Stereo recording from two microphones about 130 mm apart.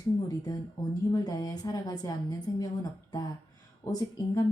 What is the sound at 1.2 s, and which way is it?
A woman's voice, 30° left (ahead or behind).